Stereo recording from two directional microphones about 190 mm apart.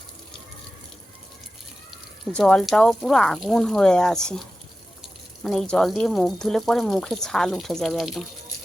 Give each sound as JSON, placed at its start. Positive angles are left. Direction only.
{"t": 2.3, "sound": "speech", "side_deg": 5}